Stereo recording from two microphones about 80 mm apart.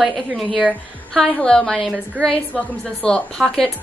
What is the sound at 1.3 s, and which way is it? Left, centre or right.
A woman's voice, centre.